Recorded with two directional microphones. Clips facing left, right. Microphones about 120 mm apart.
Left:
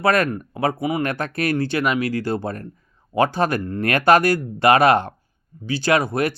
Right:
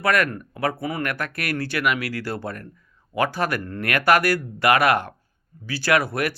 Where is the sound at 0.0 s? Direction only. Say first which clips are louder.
Left 3 dB; 25° left (ahead or behind).